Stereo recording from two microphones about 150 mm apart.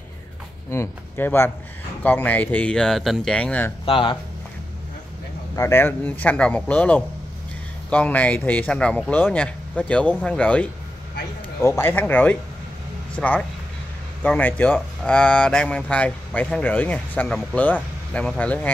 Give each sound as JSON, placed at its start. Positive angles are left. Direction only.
{"t": 0.7, "sound": "speech", "side_deg": 15}
{"t": 3.8, "sound": "speech", "side_deg": 35}
{"t": 5.6, "sound": "speech", "side_deg": 15}